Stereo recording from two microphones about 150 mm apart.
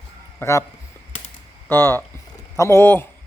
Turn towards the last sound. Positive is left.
turn(degrees=15)  # may be behind; listen again after turning